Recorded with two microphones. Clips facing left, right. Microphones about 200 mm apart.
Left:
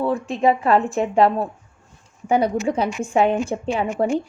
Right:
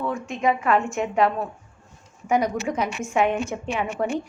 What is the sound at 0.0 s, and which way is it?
A woman's voice, 30° left (ahead or behind).